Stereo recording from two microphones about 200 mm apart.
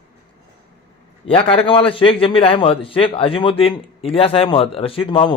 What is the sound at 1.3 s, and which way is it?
A man's voice, 25° left (ahead or behind).